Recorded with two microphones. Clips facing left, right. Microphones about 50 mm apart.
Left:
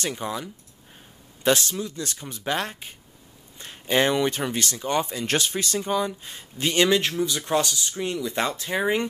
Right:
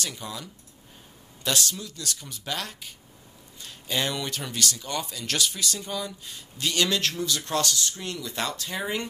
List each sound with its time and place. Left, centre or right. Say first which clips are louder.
0.0 s speech: left 6 dB; left